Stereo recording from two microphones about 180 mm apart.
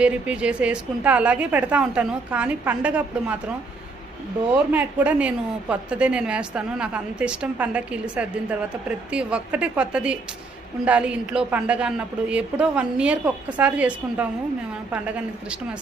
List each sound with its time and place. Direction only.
0.0 s a woman's voice: 5° right (ahead or behind)
4.5 s a woman's voice: 10° right (ahead or behind)